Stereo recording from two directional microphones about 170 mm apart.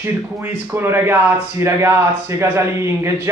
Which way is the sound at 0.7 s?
15° right (ahead or behind).